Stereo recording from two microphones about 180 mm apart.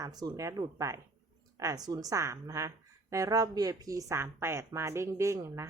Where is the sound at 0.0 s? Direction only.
20° right (ahead or behind).